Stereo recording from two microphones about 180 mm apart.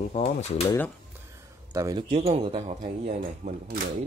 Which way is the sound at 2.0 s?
35° right (ahead or behind).